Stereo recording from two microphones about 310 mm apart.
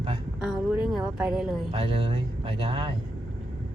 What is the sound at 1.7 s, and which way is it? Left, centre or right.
Speech, centre.